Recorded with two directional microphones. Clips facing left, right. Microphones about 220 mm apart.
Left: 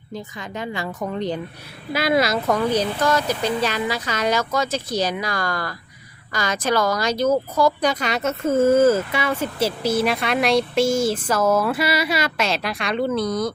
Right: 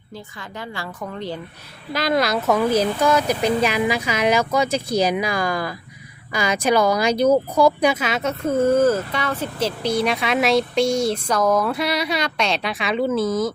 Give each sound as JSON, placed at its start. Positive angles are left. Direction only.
{"t": 0.1, "sound": "a woman's voice", "side_deg": 20}
{"t": 1.9, "sound": "speech", "side_deg": 5}